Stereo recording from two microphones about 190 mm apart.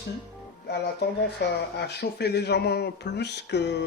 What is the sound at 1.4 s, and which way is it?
Speech, 65° left (ahead or behind).